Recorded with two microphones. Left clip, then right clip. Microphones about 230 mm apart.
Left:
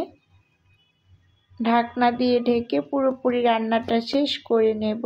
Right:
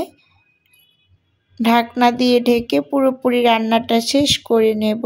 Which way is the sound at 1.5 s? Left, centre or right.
Right.